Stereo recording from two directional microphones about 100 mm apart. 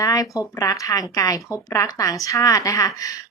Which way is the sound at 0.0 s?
35° left (ahead or behind).